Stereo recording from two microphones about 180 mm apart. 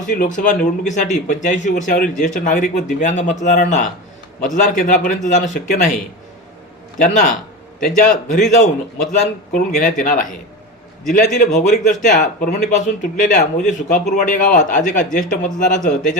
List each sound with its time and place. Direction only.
0.1 s speech: 45° left (ahead or behind)
7.0 s speech: 45° left (ahead or behind)